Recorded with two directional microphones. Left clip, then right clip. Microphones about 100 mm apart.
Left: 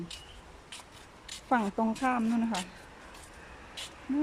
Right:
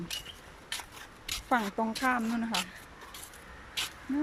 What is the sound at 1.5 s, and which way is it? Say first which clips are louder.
Speech: left 1 dB; 20° left (ahead or behind).